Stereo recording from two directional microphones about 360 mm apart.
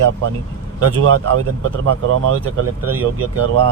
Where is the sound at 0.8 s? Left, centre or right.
Right.